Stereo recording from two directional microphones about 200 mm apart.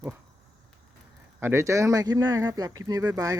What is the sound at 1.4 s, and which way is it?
Speech, 10° right (ahead or behind).